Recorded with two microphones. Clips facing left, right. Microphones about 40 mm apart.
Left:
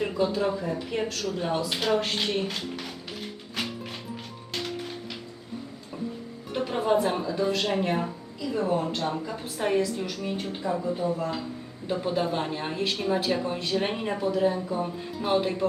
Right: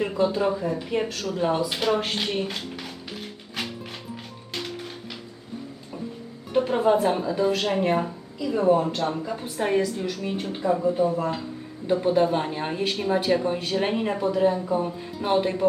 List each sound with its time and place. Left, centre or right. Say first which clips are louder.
0.0 s a woman's voice: right 3 dB; centre
0.5 s a woman's voice: right 4 dB; centre
6.7 s a woman's voice: right 2 dB; centre
11.0 s a woman's voice: right 4 dB; right; by 15.6 s centre